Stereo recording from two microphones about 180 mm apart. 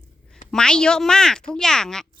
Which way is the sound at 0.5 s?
5° left (ahead or behind).